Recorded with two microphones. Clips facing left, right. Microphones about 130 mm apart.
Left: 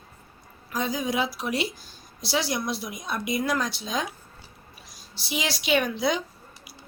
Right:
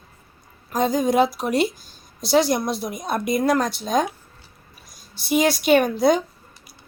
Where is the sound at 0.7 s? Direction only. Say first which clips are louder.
Right 8 dB; 50° right (ahead or behind).